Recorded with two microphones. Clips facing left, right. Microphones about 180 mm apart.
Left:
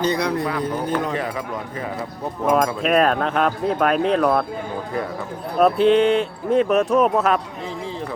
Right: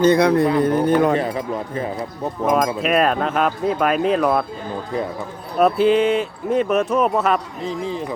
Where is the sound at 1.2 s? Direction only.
30° right (ahead or behind).